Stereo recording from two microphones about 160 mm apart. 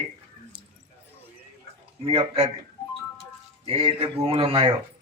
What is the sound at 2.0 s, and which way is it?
Speech, 40° right (ahead or behind).